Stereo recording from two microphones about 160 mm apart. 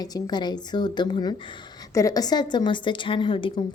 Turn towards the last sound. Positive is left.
turn(degrees=30)  # may be behind; listen again after turning